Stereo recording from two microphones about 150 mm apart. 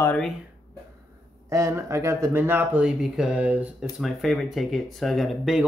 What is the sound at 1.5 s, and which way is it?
Speech, 20° right (ahead or behind).